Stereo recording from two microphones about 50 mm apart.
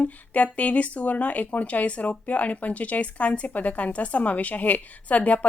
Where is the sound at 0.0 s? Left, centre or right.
Left.